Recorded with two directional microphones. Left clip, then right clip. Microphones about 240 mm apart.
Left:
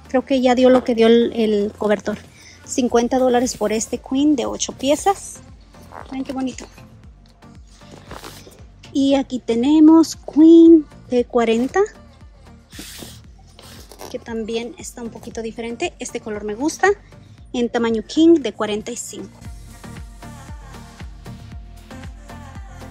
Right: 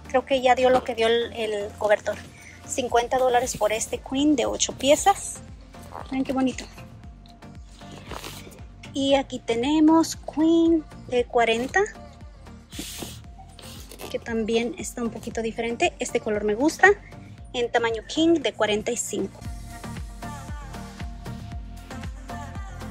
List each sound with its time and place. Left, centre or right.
0.1 s speech: left
2.6 s speech: left
8.9 s speech: left
14.0 s speech: centre
19.8 s music: centre